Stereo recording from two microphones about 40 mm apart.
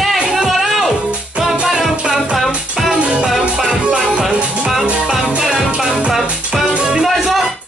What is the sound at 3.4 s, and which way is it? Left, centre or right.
Music, centre.